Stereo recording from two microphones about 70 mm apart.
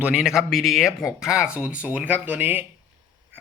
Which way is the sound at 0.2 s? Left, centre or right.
Centre.